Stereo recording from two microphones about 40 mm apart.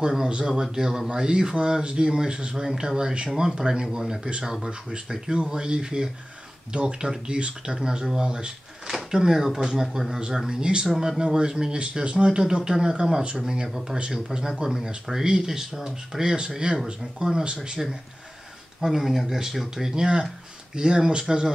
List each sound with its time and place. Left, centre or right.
0.2 s speech: right
8.8 s drawer open or close: centre
9.5 s speech: centre
17.8 s speech: centre